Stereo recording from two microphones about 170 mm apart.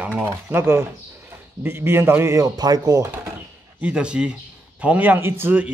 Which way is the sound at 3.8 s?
5° right (ahead or behind).